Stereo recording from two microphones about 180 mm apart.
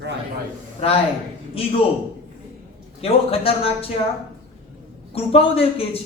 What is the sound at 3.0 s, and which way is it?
Speech, 35° left (ahead or behind).